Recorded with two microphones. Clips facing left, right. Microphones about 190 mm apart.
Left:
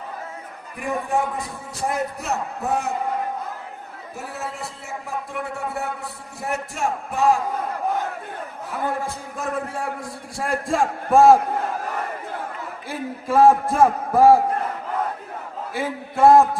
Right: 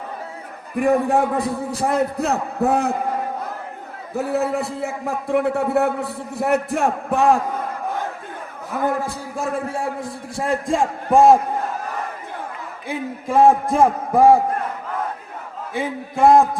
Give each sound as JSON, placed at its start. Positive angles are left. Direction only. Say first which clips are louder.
{"t": 0.8, "sound": "a man's voice", "louder": "right 7 dB", "side_deg": -60}
{"t": 4.1, "sound": "a man's voice", "louder": "right 12 dB", "side_deg": -60}
{"t": 8.8, "sound": "a man's voice", "louder": "right 4 dB", "side_deg": -40}
{"t": 12.9, "sound": "speech", "louder": "right 1 dB", "side_deg": -20}
{"t": 15.7, "sound": "speech", "louder": "right 2 dB", "side_deg": -20}